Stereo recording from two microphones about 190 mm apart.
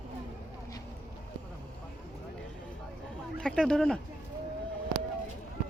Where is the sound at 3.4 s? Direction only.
5° left (ahead or behind).